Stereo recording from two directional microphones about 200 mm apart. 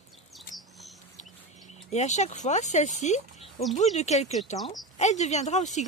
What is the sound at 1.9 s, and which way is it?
Speech, 35° left (ahead or behind).